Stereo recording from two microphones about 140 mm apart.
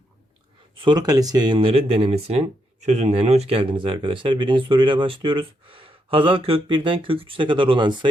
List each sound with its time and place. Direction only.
0.8 s speech: 30° right (ahead or behind)